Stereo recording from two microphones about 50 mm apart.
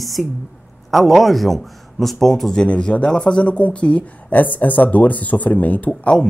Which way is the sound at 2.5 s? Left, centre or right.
Centre.